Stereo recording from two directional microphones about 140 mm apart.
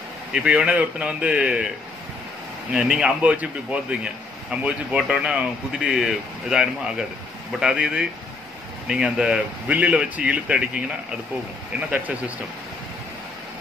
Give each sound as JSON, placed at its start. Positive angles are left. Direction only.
{"t": 0.3, "sound": "a man's voice", "side_deg": -5}
{"t": 2.7, "sound": "a man's voice", "side_deg": -5}